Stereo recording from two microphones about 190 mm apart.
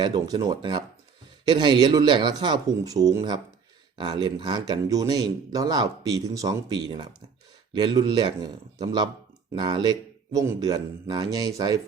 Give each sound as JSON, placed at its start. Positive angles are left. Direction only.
{"t": 0.0, "sound": "speech", "side_deg": -25}